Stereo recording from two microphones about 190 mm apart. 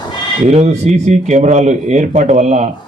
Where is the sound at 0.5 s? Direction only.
35° right (ahead or behind).